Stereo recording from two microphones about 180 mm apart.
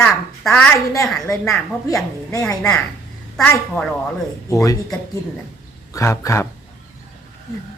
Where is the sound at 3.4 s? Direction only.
5° left (ahead or behind).